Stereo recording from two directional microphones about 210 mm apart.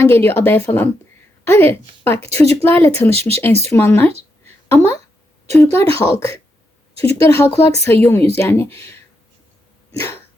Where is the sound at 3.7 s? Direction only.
10° left (ahead or behind).